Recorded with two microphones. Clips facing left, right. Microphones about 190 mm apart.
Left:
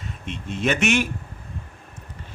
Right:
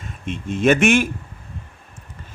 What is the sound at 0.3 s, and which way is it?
Speech, 50° right (ahead or behind).